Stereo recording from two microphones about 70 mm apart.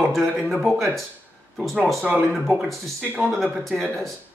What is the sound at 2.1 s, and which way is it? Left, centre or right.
Speech, right.